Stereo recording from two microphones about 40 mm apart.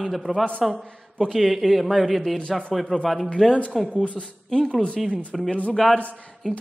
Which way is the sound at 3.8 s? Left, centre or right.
Left.